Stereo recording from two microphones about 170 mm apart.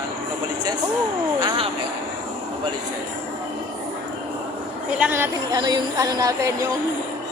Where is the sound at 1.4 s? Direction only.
30° right (ahead or behind).